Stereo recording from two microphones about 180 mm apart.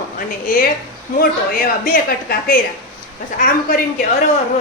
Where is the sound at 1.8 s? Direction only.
50° left (ahead or behind).